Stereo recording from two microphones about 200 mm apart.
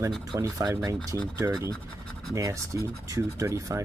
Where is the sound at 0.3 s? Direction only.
20° right (ahead or behind).